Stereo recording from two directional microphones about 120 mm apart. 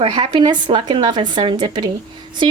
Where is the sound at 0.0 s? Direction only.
45° right (ahead or behind).